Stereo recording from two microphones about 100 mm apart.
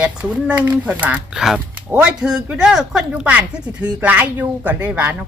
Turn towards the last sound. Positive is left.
turn(degrees=-15)  # may be behind; listen again after turning